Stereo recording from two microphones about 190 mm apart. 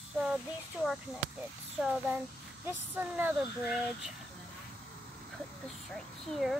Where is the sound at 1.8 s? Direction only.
5° right (ahead or behind).